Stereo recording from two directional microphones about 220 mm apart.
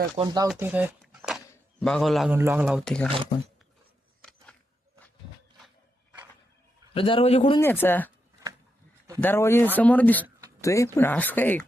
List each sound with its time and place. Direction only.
0.2 s speech: 20° right (ahead or behind)
0.4 s speech: 5° right (ahead or behind)
6.9 s a man's voice: 25° left (ahead or behind)
7.6 s speech: 10° left (ahead or behind)
9.2 s speech: 10° left (ahead or behind)